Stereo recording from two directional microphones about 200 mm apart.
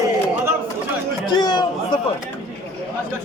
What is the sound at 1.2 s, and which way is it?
Chatter, 20° left (ahead or behind).